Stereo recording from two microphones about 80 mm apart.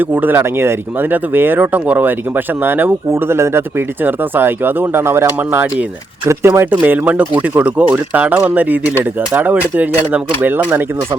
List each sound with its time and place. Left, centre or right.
0.0 s speech: right